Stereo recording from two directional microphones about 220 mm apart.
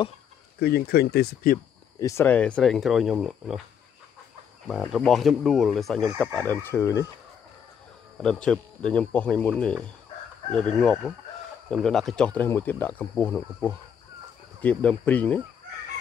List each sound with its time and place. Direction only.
0.6 s speech: 45° left (ahead or behind)
2.0 s speech: 15° left (ahead or behind)
4.6 s speech: centre (ahead or behind)
8.2 s speech: 5° left (ahead or behind)